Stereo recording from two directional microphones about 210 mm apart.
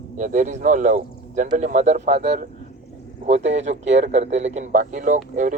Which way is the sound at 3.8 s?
60° right (ahead or behind).